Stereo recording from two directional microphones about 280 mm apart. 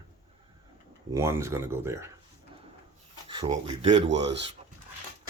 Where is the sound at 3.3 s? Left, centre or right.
Centre.